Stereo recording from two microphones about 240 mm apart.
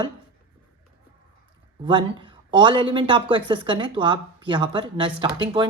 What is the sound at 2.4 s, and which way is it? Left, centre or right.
A woman's voice, right.